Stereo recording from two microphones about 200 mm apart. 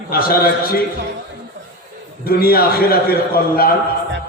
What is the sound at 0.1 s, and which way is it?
Speech, 50° left (ahead or behind).